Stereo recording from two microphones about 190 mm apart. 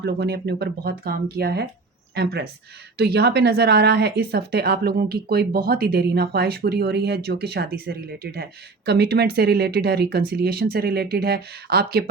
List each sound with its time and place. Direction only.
0.0 s speech: 60° right (ahead or behind)